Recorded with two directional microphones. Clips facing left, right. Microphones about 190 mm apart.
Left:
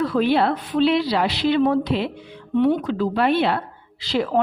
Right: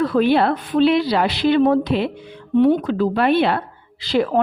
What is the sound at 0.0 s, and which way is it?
A woman's voice, 55° right (ahead or behind).